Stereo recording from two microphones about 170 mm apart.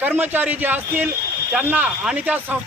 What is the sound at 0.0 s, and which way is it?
A man's voice, 10° right (ahead or behind).